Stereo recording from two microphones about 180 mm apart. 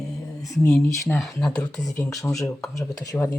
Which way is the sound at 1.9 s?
20° left (ahead or behind).